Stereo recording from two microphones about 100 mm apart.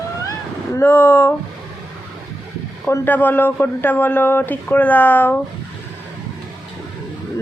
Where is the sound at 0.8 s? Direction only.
20° left (ahead or behind).